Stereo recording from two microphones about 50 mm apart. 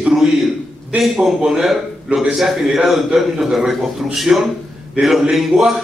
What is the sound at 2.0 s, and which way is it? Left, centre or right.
A man's voice, centre.